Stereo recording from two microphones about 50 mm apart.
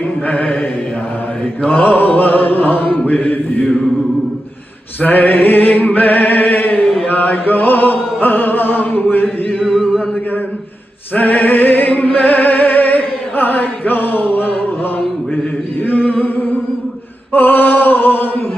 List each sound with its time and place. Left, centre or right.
0.3 s music: left
1.7 s music: left
3.1 s mantra: left
3.6 s music: centre
5.0 s music: left
11.1 s music: left
15.9 s singing: left
17.3 s a sound: left